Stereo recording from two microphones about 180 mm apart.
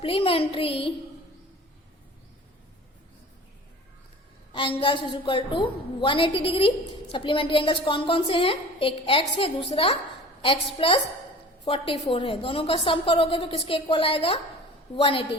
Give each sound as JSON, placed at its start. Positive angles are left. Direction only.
{"t": 0.0, "sound": "a woman's voice", "side_deg": 30}
{"t": 4.8, "sound": "a woman's voice", "side_deg": 25}